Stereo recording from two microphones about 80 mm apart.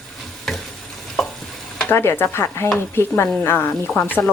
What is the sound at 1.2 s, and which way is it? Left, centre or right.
Stir, centre.